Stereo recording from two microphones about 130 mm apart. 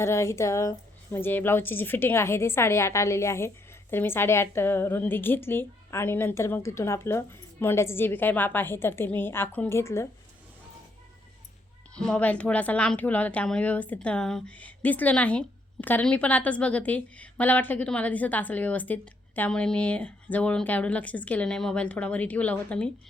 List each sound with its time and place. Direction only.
0.0 s a woman's voice: 20° left (ahead or behind)
11.9 s a woman's voice: 5° left (ahead or behind)